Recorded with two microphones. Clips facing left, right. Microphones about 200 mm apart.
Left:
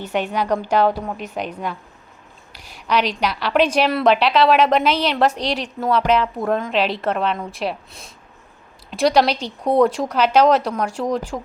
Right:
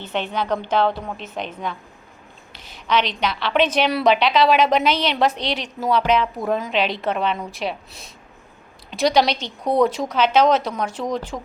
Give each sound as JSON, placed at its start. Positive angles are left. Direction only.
{"t": 0.1, "sound": "a woman's voice", "side_deg": 10}
{"t": 2.8, "sound": "a woman's voice", "side_deg": 10}
{"t": 9.3, "sound": "speech", "side_deg": 35}
{"t": 9.7, "sound": "a woman's voice", "side_deg": 0}